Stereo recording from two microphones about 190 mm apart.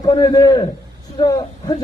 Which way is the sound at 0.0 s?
20° left (ahead or behind).